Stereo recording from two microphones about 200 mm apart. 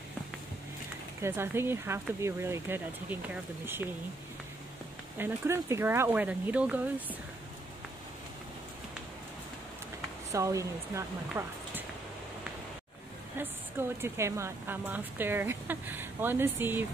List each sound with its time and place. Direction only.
1.2 s speech: 10° right (ahead or behind)
5.1 s speech: 10° right (ahead or behind)
10.3 s speech: 15° right (ahead or behind)
13.4 s a woman's voice: 10° right (ahead or behind)